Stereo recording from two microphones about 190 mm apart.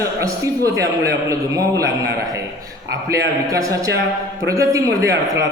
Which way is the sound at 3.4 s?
15° right (ahead or behind).